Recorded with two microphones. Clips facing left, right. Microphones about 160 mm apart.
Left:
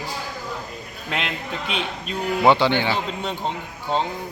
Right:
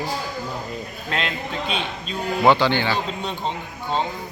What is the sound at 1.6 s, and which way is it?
Speech, 65° left (ahead or behind).